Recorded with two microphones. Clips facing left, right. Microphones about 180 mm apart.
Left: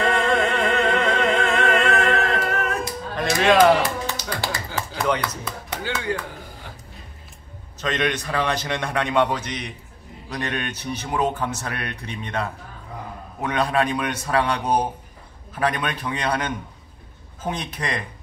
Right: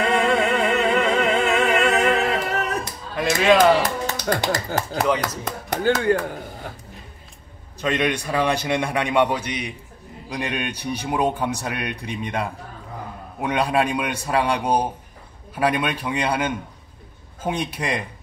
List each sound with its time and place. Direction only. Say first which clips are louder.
0.1 s music: right 2 dB; 10° right (ahead or behind)
3.8 s a sound: right 2 dB; 45° right (ahead or behind)
4.5 s speech: right 5 dB; 55° right (ahead or behind)
7.8 s speech: right 2 dB; 10° right (ahead or behind)